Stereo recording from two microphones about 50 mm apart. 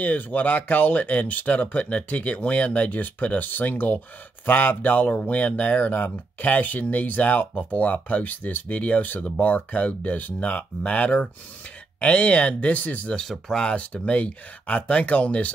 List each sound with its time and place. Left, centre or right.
0.0 s speech: left
13.1 s speech: centre
13.7 s speech: left